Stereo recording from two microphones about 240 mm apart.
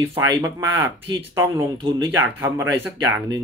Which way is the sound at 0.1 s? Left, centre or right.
Centre.